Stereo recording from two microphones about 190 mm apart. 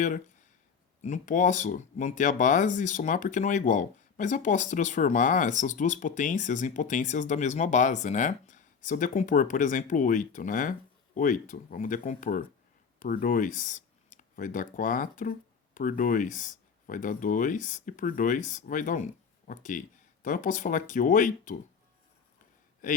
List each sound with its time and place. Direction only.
1.0 s speech: 40° left (ahead or behind)
22.8 s speech: 45° left (ahead or behind)